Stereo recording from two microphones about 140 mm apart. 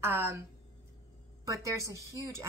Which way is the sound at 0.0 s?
15° right (ahead or behind).